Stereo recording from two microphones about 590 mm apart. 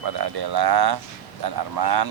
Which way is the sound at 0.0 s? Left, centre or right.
Right.